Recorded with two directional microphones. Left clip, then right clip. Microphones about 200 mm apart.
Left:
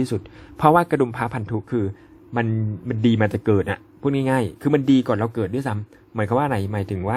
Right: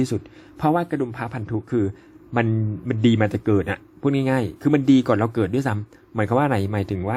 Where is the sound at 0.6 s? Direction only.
20° left (ahead or behind).